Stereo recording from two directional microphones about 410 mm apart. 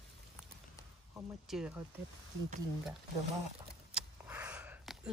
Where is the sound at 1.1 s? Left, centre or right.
Centre.